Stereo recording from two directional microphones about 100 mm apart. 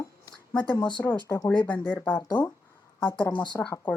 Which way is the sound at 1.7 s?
15° left (ahead or behind).